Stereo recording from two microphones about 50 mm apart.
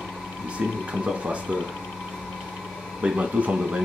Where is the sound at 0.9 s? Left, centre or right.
Centre.